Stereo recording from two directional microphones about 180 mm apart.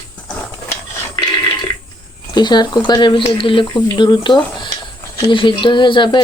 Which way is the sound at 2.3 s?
25° left (ahead or behind).